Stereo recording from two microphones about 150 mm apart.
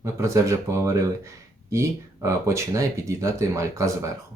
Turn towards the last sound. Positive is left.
turn(degrees=-20)  # may be behind; listen again after turning